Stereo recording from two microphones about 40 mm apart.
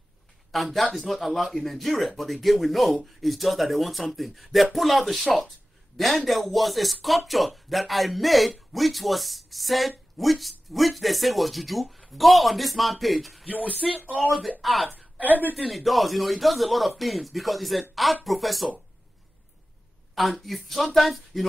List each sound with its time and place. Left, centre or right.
0.5 s speech: centre
13.5 s speech: left
14.6 s speech: centre
20.2 s speech: centre